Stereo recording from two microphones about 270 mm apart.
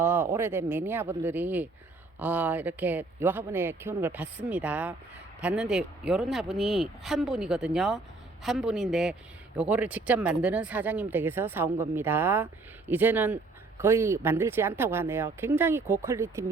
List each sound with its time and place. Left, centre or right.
0.0 s speech: centre